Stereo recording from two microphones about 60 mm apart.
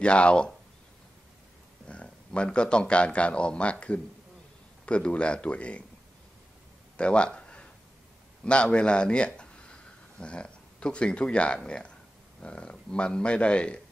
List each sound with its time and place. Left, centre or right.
0.0 s speech: centre
1.9 s a man's voice: centre
7.0 s a sound: centre
8.4 s speech: centre